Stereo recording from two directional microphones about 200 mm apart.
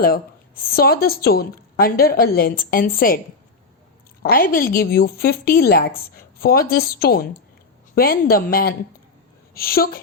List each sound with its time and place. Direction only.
0.0 s a woman's voice: 45° left (ahead or behind)
4.2 s a woman's voice: 45° left (ahead or behind)